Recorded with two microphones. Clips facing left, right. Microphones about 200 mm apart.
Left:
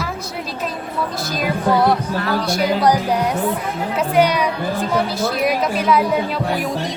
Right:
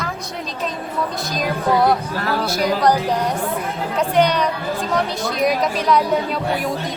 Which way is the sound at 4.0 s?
10° left (ahead or behind).